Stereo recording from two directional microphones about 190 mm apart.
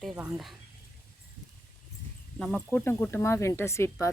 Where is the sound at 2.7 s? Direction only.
10° left (ahead or behind).